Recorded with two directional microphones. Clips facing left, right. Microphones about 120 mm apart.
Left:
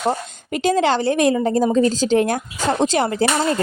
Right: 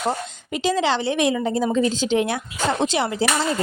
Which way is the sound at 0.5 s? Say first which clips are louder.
Left 3 dB; 50° left (ahead or behind).